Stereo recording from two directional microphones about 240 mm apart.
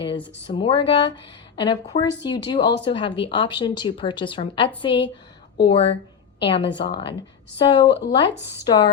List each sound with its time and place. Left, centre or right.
0.4 s speech: centre
7.9 s speech: left
8.5 s speech: centre